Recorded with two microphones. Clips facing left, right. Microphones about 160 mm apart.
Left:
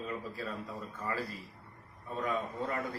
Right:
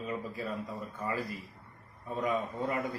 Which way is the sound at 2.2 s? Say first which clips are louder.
Right 3 dB; 10° right (ahead or behind).